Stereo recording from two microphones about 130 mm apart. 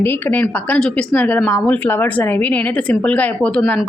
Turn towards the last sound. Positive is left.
turn(degrees=10)  # may be behind; listen again after turning